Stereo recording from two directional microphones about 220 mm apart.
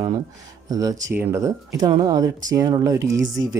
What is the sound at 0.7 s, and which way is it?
Speech, 15° right (ahead or behind).